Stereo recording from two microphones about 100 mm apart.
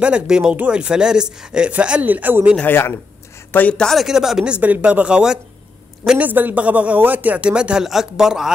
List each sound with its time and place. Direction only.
0.0 s speech: 10° right (ahead or behind)
3.5 s speech: 10° left (ahead or behind)